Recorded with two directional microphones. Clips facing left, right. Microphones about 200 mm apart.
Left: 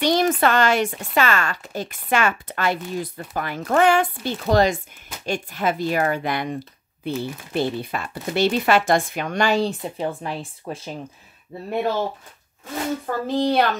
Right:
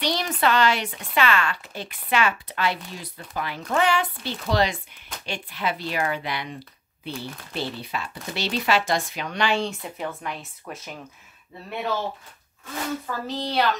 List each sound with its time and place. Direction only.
0.0 s speech: 50° left (ahead or behind); by 11.0 s 30° left (ahead or behind)
13.0 s speech: 50° left (ahead or behind)